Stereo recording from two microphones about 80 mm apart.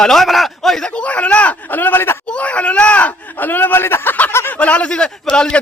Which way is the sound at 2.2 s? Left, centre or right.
Centre.